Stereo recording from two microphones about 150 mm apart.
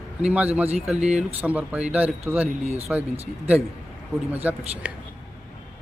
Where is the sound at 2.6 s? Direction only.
45° right (ahead or behind).